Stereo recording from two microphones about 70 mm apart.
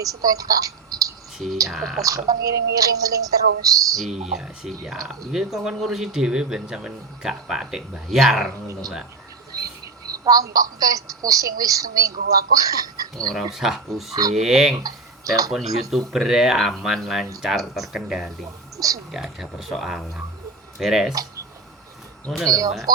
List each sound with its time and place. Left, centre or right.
0.0 s a woman's voice: right
1.7 s speech: centre
2.0 s a woman's voice: right
3.9 s speech: centre
9.6 s a woman's voice: right
13.5 s speech: centre
18.8 s speech: right
19.1 s speech: centre
22.4 s a woman's voice: right